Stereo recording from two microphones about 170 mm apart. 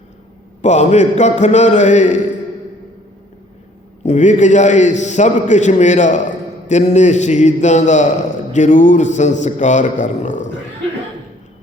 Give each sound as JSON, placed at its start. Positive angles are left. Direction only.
{"t": 0.6, "sound": "a man's voice", "side_deg": 40}
{"t": 4.0, "sound": "a man's voice", "side_deg": 45}